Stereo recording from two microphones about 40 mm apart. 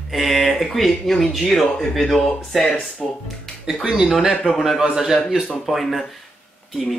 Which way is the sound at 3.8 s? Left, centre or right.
Right.